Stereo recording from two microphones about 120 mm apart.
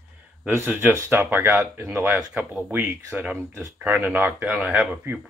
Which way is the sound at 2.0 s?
5° right (ahead or behind).